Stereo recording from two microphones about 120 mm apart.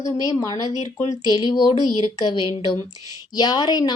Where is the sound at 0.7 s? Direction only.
70° left (ahead or behind).